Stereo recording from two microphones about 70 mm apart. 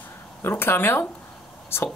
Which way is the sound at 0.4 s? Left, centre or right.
Left.